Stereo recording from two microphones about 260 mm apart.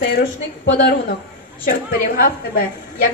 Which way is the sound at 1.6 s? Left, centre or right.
Left.